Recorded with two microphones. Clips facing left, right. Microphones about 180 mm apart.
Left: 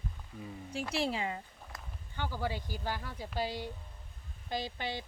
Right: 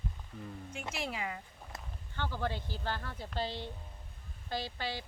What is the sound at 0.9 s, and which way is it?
Speech, 30° left (ahead or behind).